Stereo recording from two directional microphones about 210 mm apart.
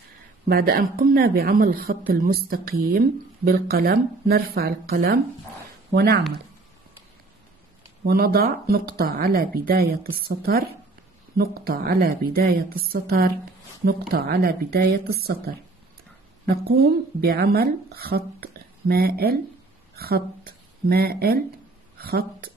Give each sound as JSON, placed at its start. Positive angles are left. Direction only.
{"t": 0.5, "sound": "a woman's voice", "side_deg": -45}
{"t": 8.0, "sound": "a woman's voice", "side_deg": -45}